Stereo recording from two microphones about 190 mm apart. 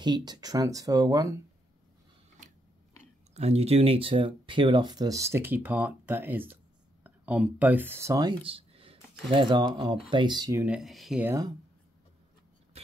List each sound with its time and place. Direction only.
0.0 s speech: 20° right (ahead or behind)
3.3 s speech: 35° right (ahead or behind)
10.6 s speech: 5° right (ahead or behind)